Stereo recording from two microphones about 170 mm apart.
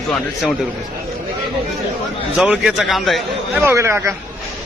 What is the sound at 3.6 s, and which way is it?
Speech, 15° right (ahead or behind).